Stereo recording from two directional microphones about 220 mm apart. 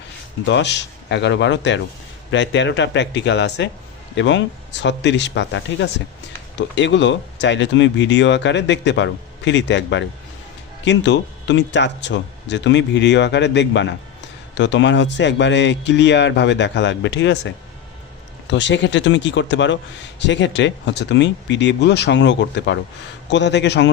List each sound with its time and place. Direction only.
0.4 s a man's voice: 55° left (ahead or behind)
18.5 s a man's voice: 55° left (ahead or behind)